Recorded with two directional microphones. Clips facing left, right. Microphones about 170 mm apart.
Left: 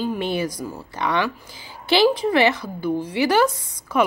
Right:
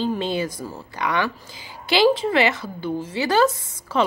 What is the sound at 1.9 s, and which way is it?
A woman's voice, 15° right (ahead or behind).